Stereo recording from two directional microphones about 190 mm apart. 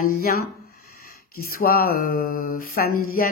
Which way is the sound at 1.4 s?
50° left (ahead or behind).